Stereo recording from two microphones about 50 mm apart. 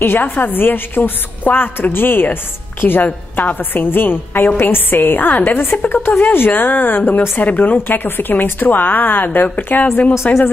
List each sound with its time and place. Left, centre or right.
0.2 s a woman's voice: left
10.1 s a woman's voice: left